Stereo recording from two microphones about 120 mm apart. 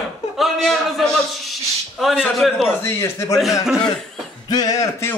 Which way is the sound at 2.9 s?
20° left (ahead or behind).